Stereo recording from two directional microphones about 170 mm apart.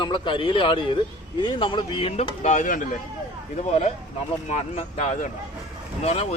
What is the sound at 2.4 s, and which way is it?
Speech, 50° left (ahead or behind).